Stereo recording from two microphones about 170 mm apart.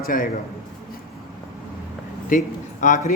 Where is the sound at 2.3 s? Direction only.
55° left (ahead or behind).